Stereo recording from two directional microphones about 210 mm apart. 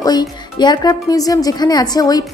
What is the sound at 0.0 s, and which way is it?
Speech, 20° left (ahead or behind).